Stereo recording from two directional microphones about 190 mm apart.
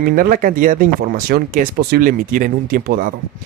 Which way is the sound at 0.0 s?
50° right (ahead or behind).